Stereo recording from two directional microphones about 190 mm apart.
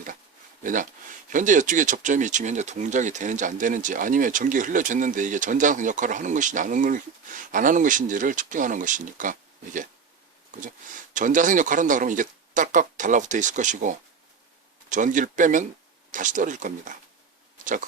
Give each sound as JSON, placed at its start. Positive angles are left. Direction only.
{"t": 0.6, "sound": "speech", "side_deg": -45}
{"t": 11.1, "sound": "speech", "side_deg": -45}